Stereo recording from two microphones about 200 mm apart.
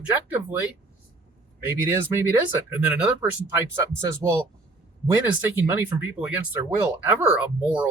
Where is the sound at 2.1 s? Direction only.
10° right (ahead or behind).